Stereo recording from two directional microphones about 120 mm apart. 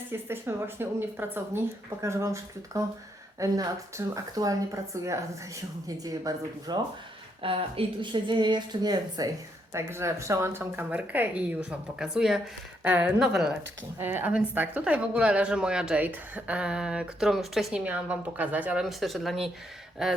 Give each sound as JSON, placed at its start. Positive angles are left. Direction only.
{"t": 0.1, "sound": "speech", "side_deg": -20}
{"t": 7.4, "sound": "speech", "side_deg": -50}
{"t": 9.7, "sound": "speech", "side_deg": -20}
{"t": 14.0, "sound": "speech", "side_deg": -15}
{"t": 18.8, "sound": "speech", "side_deg": 0}